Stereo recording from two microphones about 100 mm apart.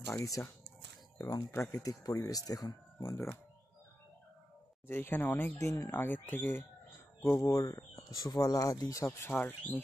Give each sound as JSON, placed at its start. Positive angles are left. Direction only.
{"t": 0.0, "sound": "speech", "side_deg": 35}
{"t": 3.0, "sound": "speech", "side_deg": 25}
{"t": 4.8, "sound": "speech", "side_deg": 20}
{"t": 9.0, "sound": "speech", "side_deg": 20}